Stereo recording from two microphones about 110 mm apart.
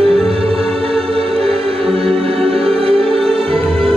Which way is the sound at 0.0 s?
60° right (ahead or behind).